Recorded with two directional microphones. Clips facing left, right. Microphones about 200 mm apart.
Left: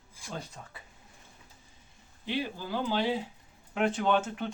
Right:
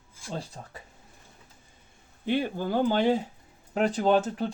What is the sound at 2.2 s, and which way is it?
Speech, 50° right (ahead or behind).